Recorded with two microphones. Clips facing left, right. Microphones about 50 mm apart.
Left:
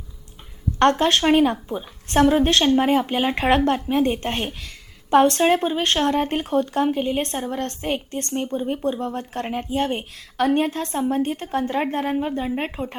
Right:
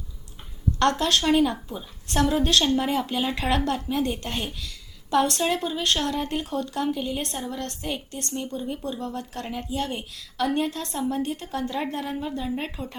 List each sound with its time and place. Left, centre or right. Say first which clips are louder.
0.8 s speech: left 5 dB; left